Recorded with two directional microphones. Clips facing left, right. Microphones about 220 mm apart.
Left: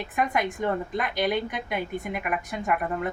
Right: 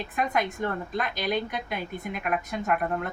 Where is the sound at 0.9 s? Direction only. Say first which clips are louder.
Left 2 dB; 15° left (ahead or behind).